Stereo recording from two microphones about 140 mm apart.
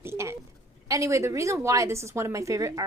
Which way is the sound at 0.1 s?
20° right (ahead or behind).